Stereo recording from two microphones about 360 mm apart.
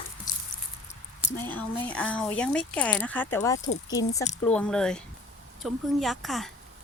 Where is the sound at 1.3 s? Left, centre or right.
Centre.